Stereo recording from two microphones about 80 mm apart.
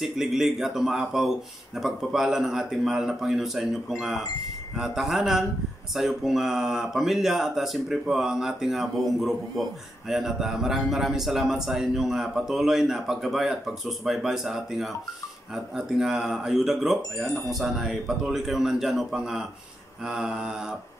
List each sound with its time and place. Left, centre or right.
0.0 s speech: centre
4.7 s speech: centre
20.1 s mantra: centre